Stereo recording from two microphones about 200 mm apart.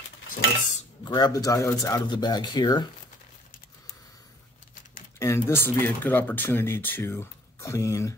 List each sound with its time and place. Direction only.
1.0 s speech: 20° left (ahead or behind)
5.2 s speech: 15° left (ahead or behind)